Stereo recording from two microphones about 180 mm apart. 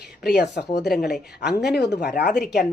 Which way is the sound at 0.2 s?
65° left (ahead or behind).